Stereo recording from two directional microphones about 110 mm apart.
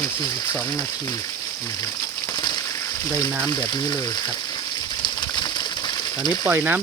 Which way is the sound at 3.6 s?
35° left (ahead or behind).